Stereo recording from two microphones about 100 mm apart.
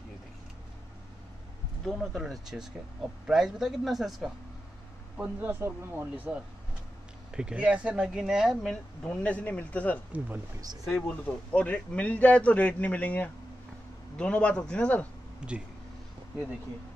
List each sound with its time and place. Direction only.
1.9 s a man's voice: centre (ahead or behind)
5.1 s speech: 15° right (ahead or behind)
8.6 s a man's voice: 10° left (ahead or behind)
10.1 s speech: 20° right (ahead or behind)
10.9 s a man's voice: 15° left (ahead or behind)
15.4 s speech: 10° right (ahead or behind)